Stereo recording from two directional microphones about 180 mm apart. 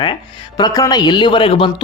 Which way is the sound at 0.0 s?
25° left (ahead or behind).